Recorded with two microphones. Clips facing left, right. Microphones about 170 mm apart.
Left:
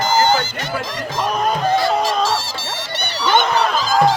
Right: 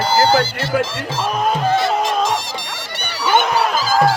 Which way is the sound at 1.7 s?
20° right (ahead or behind).